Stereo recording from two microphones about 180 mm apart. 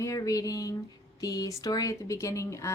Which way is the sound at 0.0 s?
20° left (ahead or behind).